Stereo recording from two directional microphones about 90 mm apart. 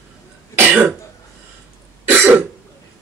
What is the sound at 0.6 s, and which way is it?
Throat clearing, 20° right (ahead or behind).